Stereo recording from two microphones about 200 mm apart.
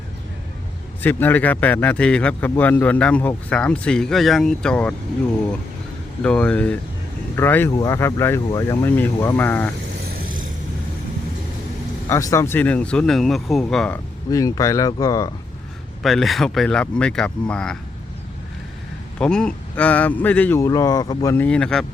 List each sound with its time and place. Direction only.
1.0 s speech: 10° left (ahead or behind)
6.2 s speech: 5° left (ahead or behind)
12.0 s speech: 15° left (ahead or behind)
14.3 s speech: 15° left (ahead or behind)
16.0 s speech: centre (ahead or behind)
19.2 s speech: 5° left (ahead or behind)